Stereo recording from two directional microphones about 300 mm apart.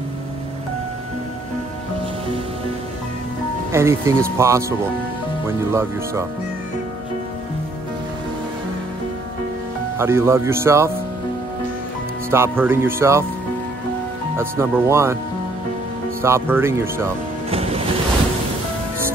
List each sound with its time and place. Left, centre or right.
3.7 s speech: centre
9.9 s speech: centre
12.3 s speech: centre
14.3 s speech: centre
16.2 s speech: centre
17.5 s music: centre